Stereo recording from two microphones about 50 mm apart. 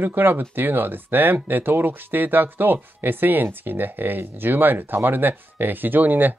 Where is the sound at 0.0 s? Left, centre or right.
Right.